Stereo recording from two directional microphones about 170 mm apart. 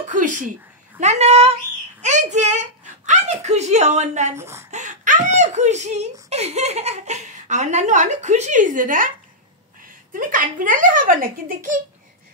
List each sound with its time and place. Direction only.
0.1 s speech: 50° right (ahead or behind)
4.4 s a woman's voice: 15° right (ahead or behind)
4.6 s whimper: 45° right (ahead or behind)
6.2 s speech: 40° right (ahead or behind)
10.1 s speech: 55° right (ahead or behind)